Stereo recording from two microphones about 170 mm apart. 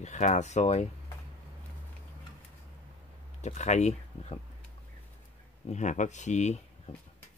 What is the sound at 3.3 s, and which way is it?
Speech, 40° left (ahead or behind).